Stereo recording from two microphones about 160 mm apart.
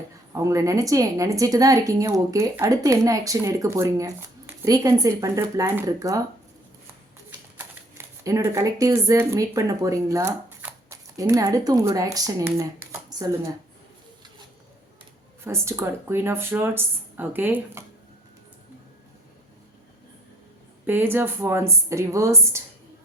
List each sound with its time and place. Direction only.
0.3 s a woman's voice: 20° right (ahead or behind)
7.6 s speech: 20° right (ahead or behind)
15.4 s speech: 15° right (ahead or behind)
20.8 s speech: 15° right (ahead or behind)